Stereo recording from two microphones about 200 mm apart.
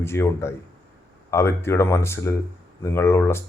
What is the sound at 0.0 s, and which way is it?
A man's voice, 15° left (ahead or behind).